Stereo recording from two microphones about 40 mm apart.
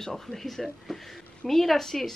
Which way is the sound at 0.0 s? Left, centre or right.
Centre.